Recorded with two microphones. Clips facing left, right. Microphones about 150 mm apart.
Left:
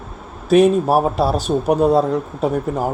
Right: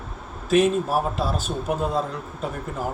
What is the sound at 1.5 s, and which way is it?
Speech, 55° left (ahead or behind).